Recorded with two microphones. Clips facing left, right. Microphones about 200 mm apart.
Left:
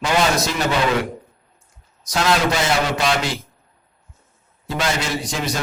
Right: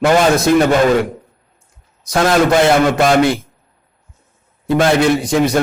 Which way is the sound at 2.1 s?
50° right (ahead or behind).